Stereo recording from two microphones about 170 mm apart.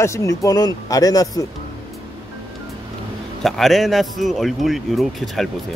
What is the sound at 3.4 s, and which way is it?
A man's voice, centre (ahead or behind).